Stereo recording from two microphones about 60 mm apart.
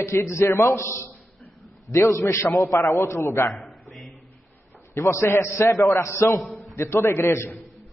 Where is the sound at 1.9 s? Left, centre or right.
Left.